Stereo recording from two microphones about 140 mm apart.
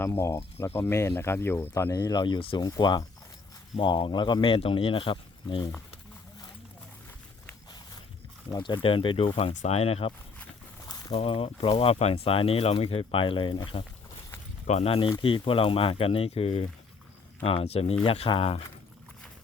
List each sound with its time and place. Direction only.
0.0 s speech: 20° left (ahead or behind); by 5.6 s 40° left (ahead or behind)
8.4 s speech: 30° left (ahead or behind)
11.1 s speech: 45° left (ahead or behind)
14.7 s speech: 45° left (ahead or behind)